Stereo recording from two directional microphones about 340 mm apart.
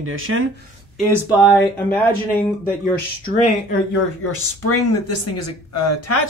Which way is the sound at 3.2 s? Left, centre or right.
Left.